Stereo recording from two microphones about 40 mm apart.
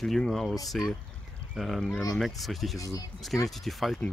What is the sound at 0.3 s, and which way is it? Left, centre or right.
Speech, centre.